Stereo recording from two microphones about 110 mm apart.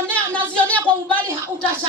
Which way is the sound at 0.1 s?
10° left (ahead or behind).